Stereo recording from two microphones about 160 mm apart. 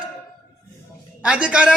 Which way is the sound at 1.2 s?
5° right (ahead or behind).